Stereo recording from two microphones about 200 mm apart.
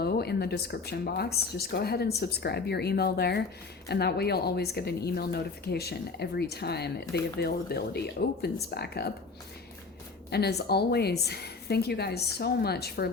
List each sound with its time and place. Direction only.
0.0 s speech: 55° left (ahead or behind)
10.2 s speech: 55° left (ahead or behind)